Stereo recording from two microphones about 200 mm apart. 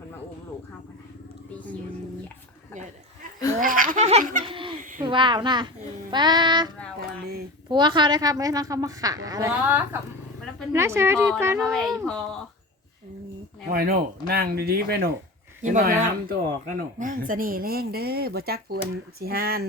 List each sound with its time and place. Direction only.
3.6 s speech: 45° right (ahead or behind)
4.4 s a sound: 25° right (ahead or behind)
4.8 s a sound: 40° right (ahead or behind)
5.0 s a child's voice: 25° right (ahead or behind)
7.7 s a woman's voice: 20° right (ahead or behind); by 12.4 s 5° left (ahead or behind)
13.7 s speech: 50° right (ahead or behind)
15.6 s speech: 40° right (ahead or behind)